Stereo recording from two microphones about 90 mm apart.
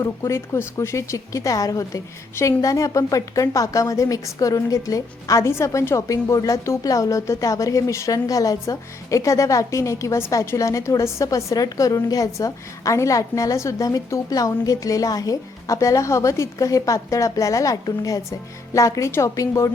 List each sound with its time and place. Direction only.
0.0 s a woman's voice: 30° left (ahead or behind)